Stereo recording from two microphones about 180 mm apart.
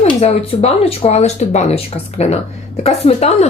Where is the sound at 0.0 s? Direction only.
35° left (ahead or behind).